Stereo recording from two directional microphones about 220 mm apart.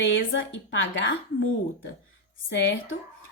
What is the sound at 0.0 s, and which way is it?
A woman's voice, 60° left (ahead or behind).